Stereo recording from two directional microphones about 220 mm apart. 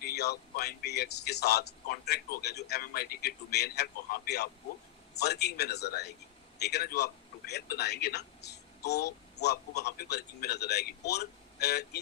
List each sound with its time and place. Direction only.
0.0 s a man's voice: 45° left (ahead or behind)